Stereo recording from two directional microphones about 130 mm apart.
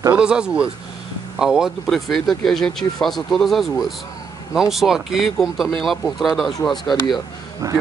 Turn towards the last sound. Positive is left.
turn(degrees=-25)  # may be behind; listen again after turning